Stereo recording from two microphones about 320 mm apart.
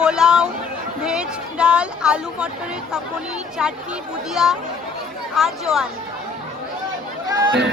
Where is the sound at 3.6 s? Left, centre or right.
Centre.